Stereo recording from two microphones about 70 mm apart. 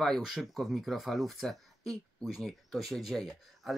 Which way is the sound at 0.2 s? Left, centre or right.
Centre.